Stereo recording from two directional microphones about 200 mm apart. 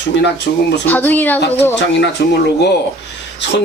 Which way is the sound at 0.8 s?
10° left (ahead or behind).